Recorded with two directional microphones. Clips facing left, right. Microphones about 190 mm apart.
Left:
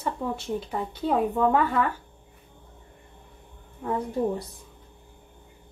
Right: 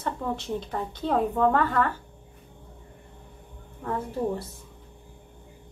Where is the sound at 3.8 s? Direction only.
15° left (ahead or behind).